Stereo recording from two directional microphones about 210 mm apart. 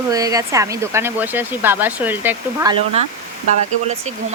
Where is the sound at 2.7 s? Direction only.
25° right (ahead or behind).